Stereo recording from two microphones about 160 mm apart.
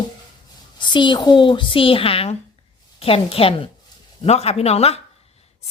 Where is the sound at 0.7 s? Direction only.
30° left (ahead or behind).